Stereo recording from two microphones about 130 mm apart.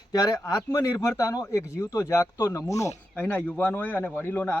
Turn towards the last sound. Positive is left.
turn(degrees=15)  # may be behind; listen again after turning